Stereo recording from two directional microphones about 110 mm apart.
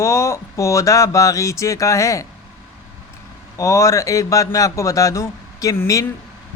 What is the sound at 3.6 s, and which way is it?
A man's voice, 30° left (ahead or behind).